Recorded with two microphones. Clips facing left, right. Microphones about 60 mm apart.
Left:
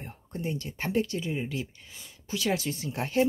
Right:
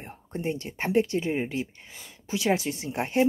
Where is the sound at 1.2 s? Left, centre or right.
Right.